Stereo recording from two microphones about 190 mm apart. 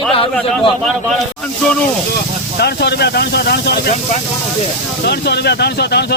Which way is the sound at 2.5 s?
60° left (ahead or behind).